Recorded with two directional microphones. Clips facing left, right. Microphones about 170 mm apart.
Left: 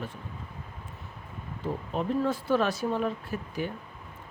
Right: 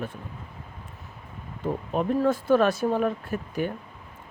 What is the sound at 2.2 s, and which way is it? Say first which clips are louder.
Speech: right 6 dB; 50° right (ahead or behind).